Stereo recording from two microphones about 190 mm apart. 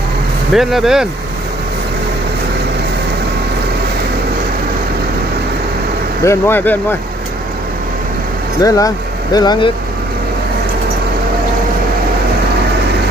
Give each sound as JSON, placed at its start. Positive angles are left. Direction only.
{"t": 0.5, "sound": "speech", "side_deg": 0}
{"t": 6.2, "sound": "speech", "side_deg": 15}
{"t": 8.6, "sound": "speech", "side_deg": 20}